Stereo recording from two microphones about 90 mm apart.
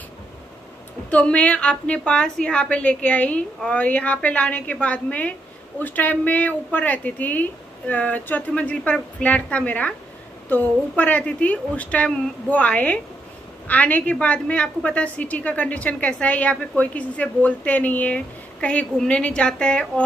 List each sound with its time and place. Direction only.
1.1 s a woman's voice: 15° left (ahead or behind)